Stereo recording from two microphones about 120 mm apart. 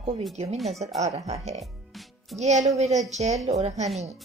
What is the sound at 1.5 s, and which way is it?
Music, centre (ahead or behind).